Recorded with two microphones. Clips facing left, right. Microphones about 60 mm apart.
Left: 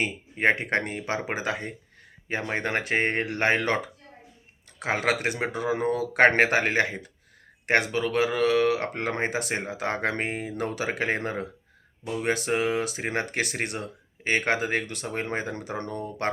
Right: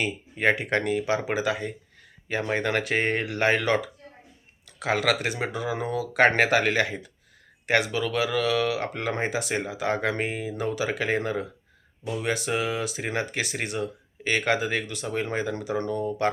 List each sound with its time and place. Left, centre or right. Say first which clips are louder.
0.0 s speech: even; left